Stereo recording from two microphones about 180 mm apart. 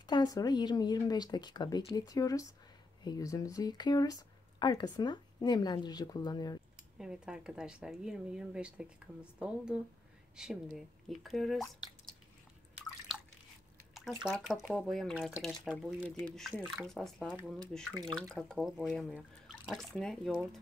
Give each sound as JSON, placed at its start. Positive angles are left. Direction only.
{"t": 0.0, "sound": "speech", "side_deg": 25}
{"t": 7.0, "sound": "speech", "side_deg": -5}
{"t": 13.9, "sound": "speech", "side_deg": 0}